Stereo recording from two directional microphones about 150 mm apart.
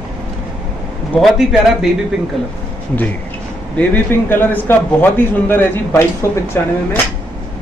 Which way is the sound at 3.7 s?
15° left (ahead or behind).